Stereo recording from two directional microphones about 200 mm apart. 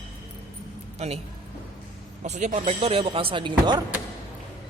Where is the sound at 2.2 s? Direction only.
35° right (ahead or behind).